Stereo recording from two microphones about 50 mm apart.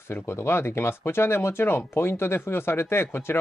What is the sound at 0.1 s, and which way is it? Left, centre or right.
Speech, left.